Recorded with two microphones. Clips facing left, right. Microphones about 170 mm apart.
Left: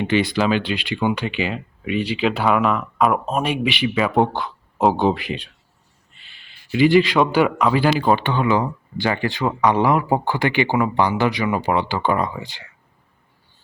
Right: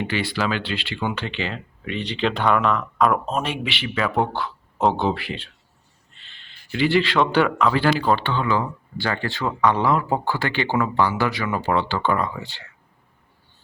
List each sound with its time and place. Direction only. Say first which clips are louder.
0.0 s speech: left 5 dB; 20° left (ahead or behind)
4.8 s speech: left 3 dB; 5° left (ahead or behind)
5.0 s speech: left 4 dB; 15° left (ahead or behind)